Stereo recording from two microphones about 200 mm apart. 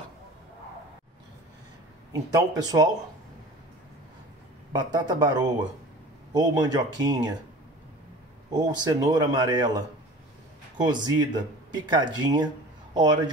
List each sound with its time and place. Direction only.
2.1 s speech: 20° right (ahead or behind)
4.7 s speech: 20° right (ahead or behind)
8.5 s speech: 20° right (ahead or behind)